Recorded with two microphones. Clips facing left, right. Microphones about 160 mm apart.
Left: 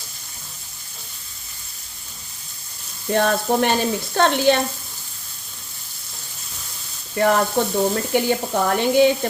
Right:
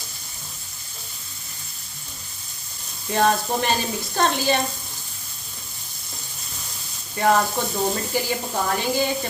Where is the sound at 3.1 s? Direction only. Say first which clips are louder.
Left 2 dB; 60° left (ahead or behind).